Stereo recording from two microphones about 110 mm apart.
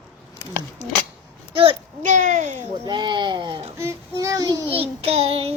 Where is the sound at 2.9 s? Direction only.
45° right (ahead or behind).